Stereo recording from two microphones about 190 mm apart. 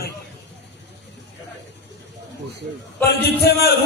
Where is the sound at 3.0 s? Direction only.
55° left (ahead or behind).